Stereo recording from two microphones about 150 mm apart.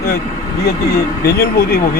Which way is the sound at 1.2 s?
90° left.